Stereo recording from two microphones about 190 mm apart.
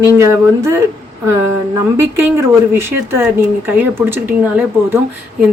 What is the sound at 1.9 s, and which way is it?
Speech, 15° right (ahead or behind).